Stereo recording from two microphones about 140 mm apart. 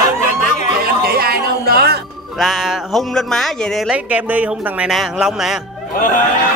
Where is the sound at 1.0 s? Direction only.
90° right.